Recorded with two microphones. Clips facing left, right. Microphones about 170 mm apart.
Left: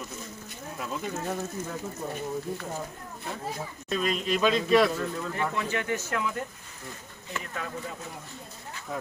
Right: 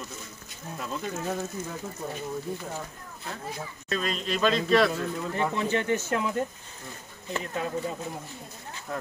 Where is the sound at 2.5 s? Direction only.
Centre (ahead or behind).